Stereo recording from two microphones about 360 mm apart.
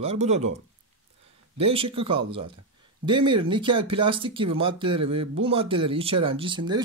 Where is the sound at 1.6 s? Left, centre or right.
Centre.